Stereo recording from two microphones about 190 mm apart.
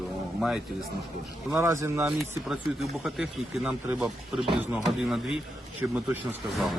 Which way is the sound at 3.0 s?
Centre (ahead or behind).